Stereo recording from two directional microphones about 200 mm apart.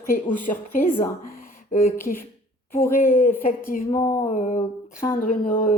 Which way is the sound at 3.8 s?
15° left (ahead or behind).